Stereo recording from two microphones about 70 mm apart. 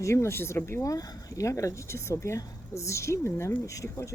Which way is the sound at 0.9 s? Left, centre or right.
Left.